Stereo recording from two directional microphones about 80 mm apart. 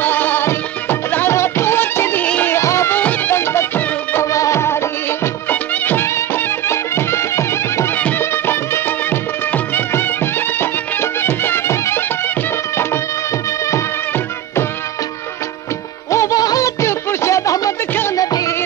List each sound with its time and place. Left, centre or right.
0.0 s music: left
2.2 s music: centre
2.5 s music: left
3.0 s music: centre
16.1 s music: left